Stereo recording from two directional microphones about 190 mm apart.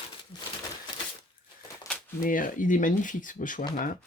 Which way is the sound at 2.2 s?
45° left (ahead or behind).